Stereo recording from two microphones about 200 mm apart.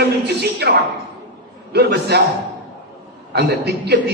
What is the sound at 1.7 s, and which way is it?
Speech, 55° right (ahead or behind).